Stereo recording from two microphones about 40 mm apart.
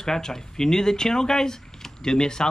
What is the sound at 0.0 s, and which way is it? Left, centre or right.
Speech, centre.